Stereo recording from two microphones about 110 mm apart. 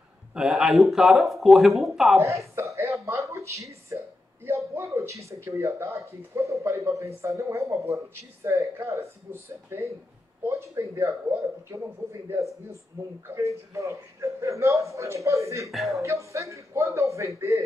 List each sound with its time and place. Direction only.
0.3 s speech: 5° right (ahead or behind)
2.1 s a sound: 25° right (ahead or behind)
4.5 s a man's voice: 25° right (ahead or behind)
15.7 s speech: centre (ahead or behind)
16.0 s a man's voice: 30° right (ahead or behind)